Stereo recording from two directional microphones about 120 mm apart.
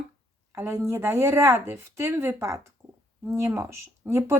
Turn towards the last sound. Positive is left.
turn(degrees=-25)  # may be behind; listen again after turning